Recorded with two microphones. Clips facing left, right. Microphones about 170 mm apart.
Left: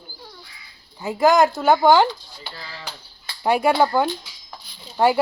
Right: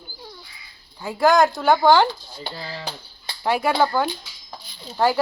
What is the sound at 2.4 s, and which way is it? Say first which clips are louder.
Speech: right 5 dB; 30° right (ahead or behind).